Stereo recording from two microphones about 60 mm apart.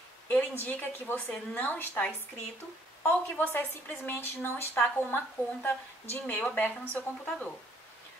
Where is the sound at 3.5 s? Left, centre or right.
Left.